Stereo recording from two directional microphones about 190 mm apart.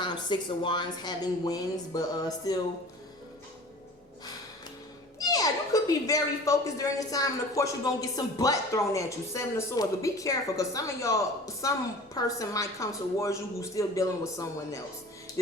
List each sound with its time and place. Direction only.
0.0 s a woman's voice: 25° left (ahead or behind)
5.2 s a woman's voice: 20° left (ahead or behind)